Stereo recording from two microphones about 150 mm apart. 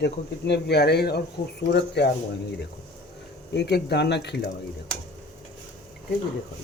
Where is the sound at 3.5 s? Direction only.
90° left.